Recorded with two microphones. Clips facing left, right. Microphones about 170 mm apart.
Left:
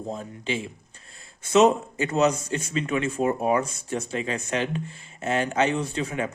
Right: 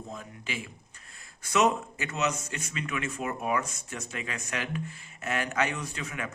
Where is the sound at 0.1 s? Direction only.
30° left (ahead or behind).